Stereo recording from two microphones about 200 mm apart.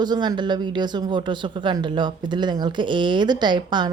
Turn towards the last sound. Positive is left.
turn(degrees=-20)  # may be behind; listen again after turning